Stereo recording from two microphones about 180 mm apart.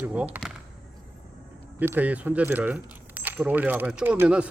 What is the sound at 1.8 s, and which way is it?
A man's voice, 10° right (ahead or behind).